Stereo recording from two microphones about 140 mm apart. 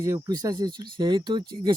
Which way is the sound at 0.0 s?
25° right (ahead or behind).